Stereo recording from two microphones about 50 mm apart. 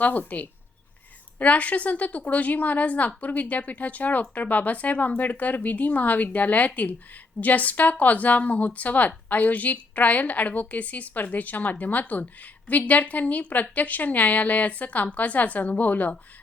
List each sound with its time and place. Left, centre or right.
0.0 s speech: left